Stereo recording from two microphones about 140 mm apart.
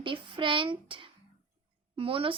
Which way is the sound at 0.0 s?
35° right (ahead or behind).